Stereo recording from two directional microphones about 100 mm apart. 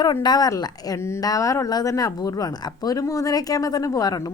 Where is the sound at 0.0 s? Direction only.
45° left (ahead or behind).